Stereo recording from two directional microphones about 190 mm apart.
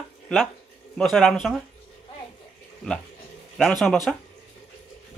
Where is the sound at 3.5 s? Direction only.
Centre (ahead or behind).